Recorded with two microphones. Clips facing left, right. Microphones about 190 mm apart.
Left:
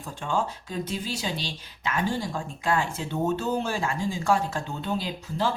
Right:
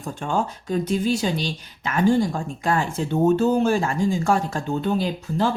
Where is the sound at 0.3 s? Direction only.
50° right (ahead or behind).